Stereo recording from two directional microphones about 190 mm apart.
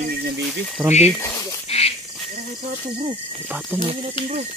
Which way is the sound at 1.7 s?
30° left (ahead or behind).